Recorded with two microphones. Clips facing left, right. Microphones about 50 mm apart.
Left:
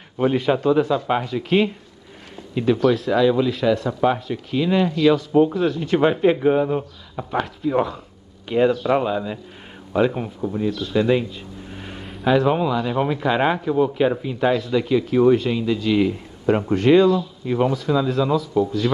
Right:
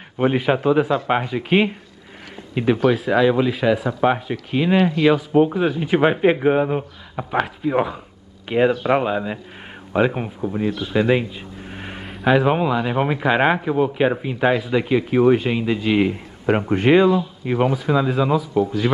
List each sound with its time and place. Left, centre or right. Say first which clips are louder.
0.4 s speech: even; right
0.9 s speech: right 1 dB; right
4.0 s speech: right 1 dB; right
11.6 s a sound: right 4 dB; right
12.4 s speech: right 1 dB; right